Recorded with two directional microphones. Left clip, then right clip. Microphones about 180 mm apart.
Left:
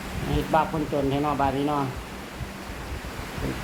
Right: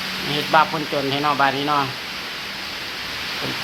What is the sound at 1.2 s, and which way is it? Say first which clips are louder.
Speech: right 6 dB; 25° right (ahead or behind).